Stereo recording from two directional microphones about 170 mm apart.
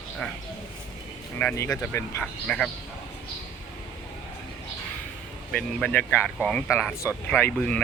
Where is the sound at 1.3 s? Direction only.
10° left (ahead or behind).